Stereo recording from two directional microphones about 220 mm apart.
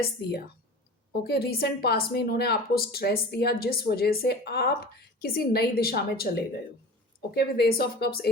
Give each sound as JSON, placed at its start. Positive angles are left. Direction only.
{"t": 0.0, "sound": "a woman's voice", "side_deg": 45}